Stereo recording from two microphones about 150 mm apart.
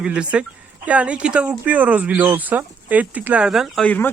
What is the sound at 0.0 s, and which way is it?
Speech, 5° right (ahead or behind).